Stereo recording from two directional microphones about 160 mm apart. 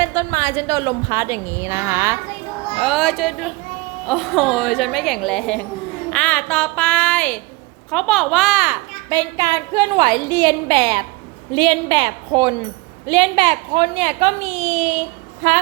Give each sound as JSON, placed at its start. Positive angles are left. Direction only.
{"t": 0.0, "sound": "a woman's voice", "side_deg": -20}
{"t": 2.7, "sound": "a woman's voice", "side_deg": 0}
{"t": 9.0, "sound": "a woman's voice", "side_deg": -25}